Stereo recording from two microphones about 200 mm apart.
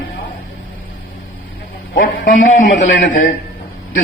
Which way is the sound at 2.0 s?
40° left (ahead or behind).